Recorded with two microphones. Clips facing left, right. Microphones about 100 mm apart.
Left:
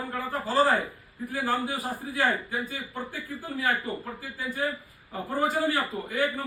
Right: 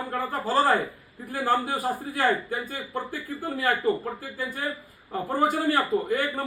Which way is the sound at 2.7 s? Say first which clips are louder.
Right 4 dB; 50° right (ahead or behind).